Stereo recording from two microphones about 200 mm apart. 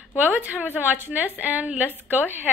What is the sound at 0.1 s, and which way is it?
A woman's voice, 5° right (ahead or behind).